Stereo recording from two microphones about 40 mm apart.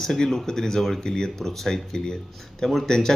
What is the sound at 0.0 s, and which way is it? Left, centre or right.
Speech, centre.